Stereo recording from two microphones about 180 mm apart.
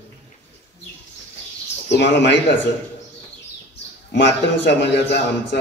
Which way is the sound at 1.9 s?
75° left (ahead or behind).